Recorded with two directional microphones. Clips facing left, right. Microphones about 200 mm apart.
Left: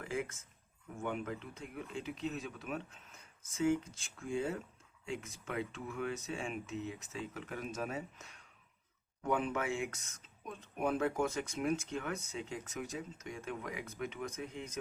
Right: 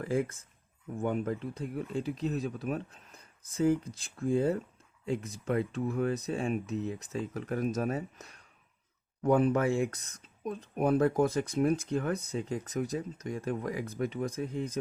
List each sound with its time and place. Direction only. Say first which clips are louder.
0.0 s speech: right 8 dB; 35° right (ahead or behind)